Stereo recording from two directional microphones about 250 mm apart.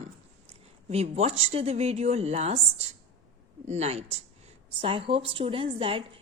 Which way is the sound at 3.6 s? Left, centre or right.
Right.